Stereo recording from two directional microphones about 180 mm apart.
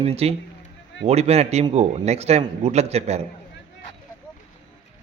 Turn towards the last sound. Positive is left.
turn(degrees=-35)  # may be behind; listen again after turning